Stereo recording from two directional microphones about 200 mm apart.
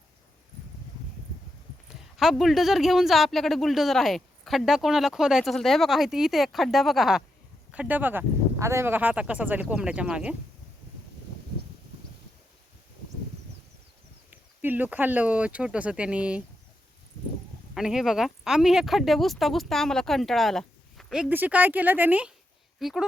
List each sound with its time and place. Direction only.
1.9 s speech: centre (ahead or behind)
14.3 s speech: 10° right (ahead or behind)
17.7 s speech: centre (ahead or behind)